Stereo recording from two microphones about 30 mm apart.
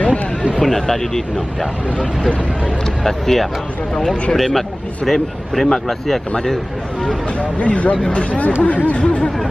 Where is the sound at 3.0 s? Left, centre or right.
Centre.